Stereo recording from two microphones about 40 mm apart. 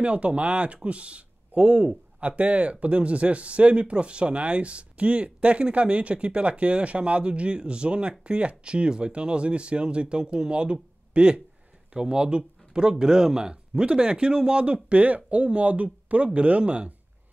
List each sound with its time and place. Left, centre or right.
0.0 s speech: right